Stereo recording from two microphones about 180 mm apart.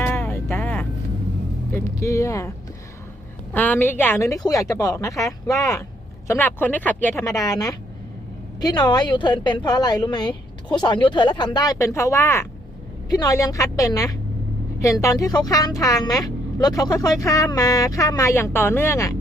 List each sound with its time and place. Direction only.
0.0 s music: 10° left (ahead or behind)
1.7 s speech: 15° left (ahead or behind)
3.5 s speech: 10° left (ahead or behind)